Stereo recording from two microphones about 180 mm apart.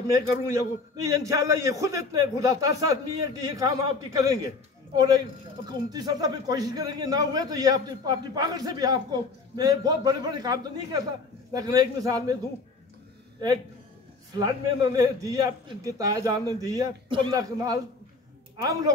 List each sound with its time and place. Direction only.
0.1 s a man's voice: 15° right (ahead or behind)
14.3 s speech: 20° right (ahead or behind)